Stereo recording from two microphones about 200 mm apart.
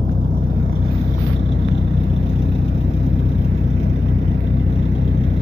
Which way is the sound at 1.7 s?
60° left (ahead or behind).